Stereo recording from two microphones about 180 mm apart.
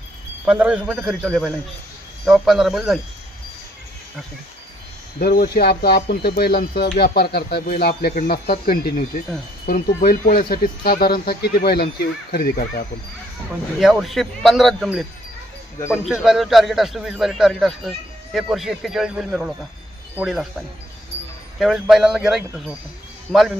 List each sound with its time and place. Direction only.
0.5 s a man's voice: 5° right (ahead or behind)
5.2 s speech: 60° left (ahead or behind)
13.7 s a man's voice: centre (ahead or behind)
21.5 s a man's voice: centre (ahead or behind)